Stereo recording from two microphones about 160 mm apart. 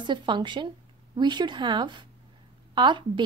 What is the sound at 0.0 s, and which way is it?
A woman's voice, 30° right (ahead or behind).